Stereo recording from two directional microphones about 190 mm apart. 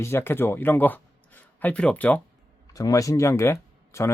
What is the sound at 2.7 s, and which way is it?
Speech, 20° left (ahead or behind).